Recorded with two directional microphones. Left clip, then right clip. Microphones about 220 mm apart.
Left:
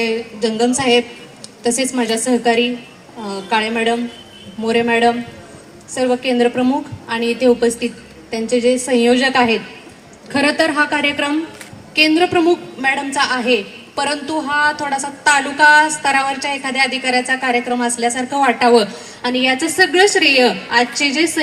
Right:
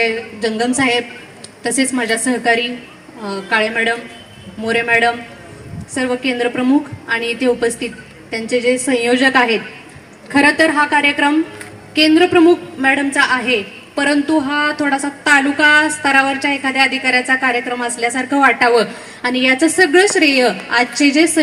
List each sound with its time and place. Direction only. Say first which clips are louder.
0.0 s a woman's voice: right 1 dB; 55° left (ahead or behind)